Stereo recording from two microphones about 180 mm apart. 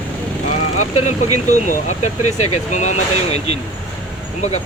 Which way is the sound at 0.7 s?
40° left (ahead or behind).